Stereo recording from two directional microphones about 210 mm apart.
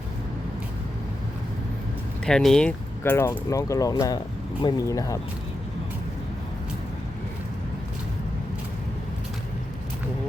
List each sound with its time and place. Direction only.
2.2 s speech: centre (ahead or behind)